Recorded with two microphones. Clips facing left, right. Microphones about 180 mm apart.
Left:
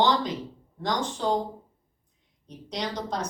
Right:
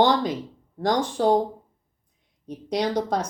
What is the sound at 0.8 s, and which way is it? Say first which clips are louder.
Speech: right 6 dB; 55° right (ahead or behind).